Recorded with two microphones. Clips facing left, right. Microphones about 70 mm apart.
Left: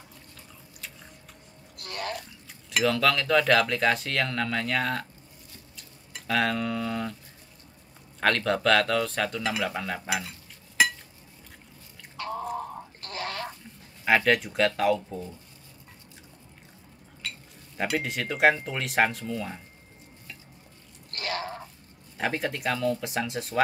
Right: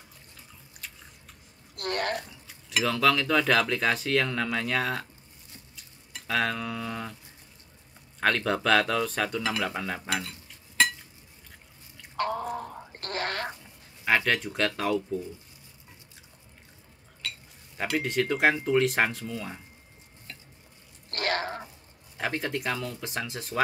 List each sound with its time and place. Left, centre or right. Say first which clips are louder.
1.8 s a sound: right 5 dB; right
2.4 s speech: left 4 dB; centre
5.8 s a sound: left 1 dB; centre
8.2 s speech: left 1 dB; centre
12.2 s drip: right 6 dB; right
13.0 s duck: right 4 dB; right
14.0 s speech: left 3 dB; centre
17.7 s speech: right 1 dB; centre
21.1 s a sound: right 3 dB; right
22.1 s speech: left 1 dB; centre